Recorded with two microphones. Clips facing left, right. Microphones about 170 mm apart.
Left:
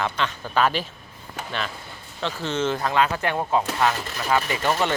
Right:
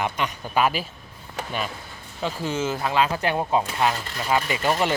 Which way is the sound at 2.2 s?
10° right (ahead or behind).